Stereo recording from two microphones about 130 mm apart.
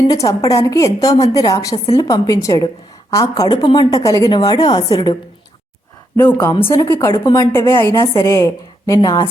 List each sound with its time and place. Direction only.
0.1 s a woman's voice: 25° left (ahead or behind)
6.7 s a woman's voice: 20° left (ahead or behind)
7.1 s a woman's voice: 35° left (ahead or behind)
7.5 s a woman's voice: 20° left (ahead or behind)